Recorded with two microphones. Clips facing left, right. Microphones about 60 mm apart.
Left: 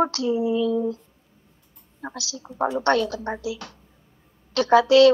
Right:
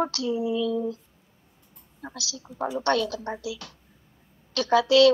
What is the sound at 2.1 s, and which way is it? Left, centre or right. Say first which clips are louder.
A woman's voice: left 2 dB; left.